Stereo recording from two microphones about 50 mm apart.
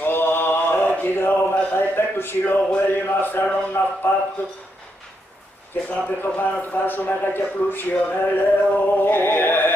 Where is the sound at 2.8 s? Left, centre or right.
Left.